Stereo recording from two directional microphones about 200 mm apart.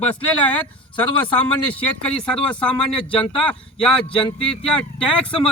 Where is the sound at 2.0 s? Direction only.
5° left (ahead or behind).